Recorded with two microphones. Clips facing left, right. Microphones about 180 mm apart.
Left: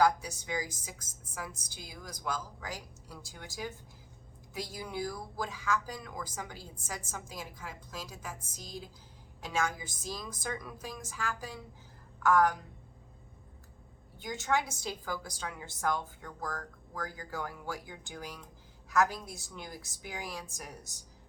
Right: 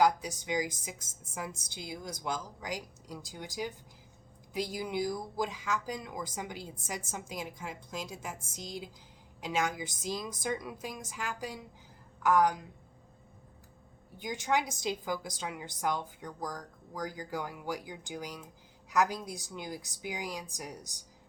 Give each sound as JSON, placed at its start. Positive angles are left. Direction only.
{"t": 0.0, "sound": "a woman's voice", "side_deg": -20}
{"t": 14.2, "sound": "a woman's voice", "side_deg": -15}